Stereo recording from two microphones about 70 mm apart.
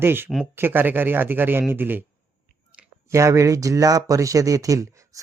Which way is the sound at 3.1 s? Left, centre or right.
Right.